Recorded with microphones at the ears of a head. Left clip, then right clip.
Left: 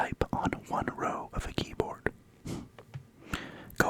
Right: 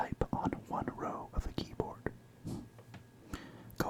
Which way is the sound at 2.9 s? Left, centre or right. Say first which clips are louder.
Left 10 dB; left.